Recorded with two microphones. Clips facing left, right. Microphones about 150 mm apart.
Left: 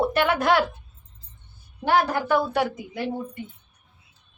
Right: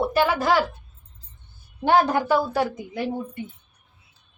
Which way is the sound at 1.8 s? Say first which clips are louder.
Right 3 dB; 25° right (ahead or behind).